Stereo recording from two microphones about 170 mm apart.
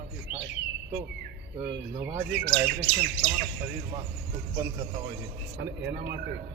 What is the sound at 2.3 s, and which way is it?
Speech, 90° right.